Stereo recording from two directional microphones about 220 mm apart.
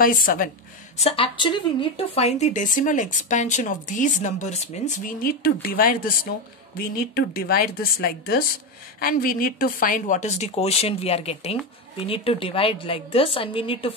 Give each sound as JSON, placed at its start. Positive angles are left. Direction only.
{"t": 0.0, "sound": "speech", "side_deg": 40}
{"t": 0.9, "sound": "speech", "side_deg": 25}
{"t": 7.2, "sound": "a woman's voice", "side_deg": 40}